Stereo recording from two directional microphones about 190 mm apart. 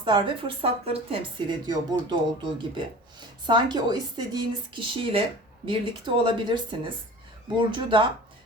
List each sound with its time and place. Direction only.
0.0 s speech: 25° right (ahead or behind)